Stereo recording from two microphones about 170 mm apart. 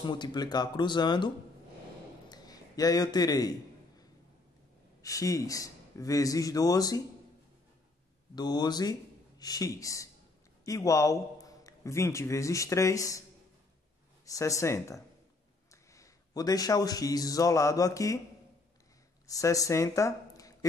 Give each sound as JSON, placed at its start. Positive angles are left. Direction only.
{"t": 0.0, "sound": "a man's voice", "side_deg": 25}
{"t": 2.2, "sound": "a sound", "side_deg": 20}
{"t": 5.0, "sound": "a man's voice", "side_deg": 20}
{"t": 8.4, "sound": "a man's voice", "side_deg": 25}
{"t": 14.3, "sound": "speech", "side_deg": 20}
{"t": 19.2, "sound": "speech", "side_deg": 20}